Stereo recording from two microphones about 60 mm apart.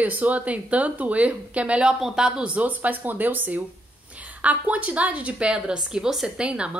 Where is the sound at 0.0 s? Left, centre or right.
Right.